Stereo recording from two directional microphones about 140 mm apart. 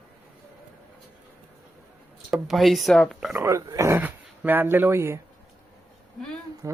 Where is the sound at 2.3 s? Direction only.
5° right (ahead or behind).